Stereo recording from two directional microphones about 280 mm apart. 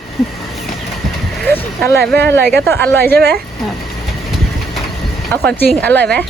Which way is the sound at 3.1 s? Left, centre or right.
Right.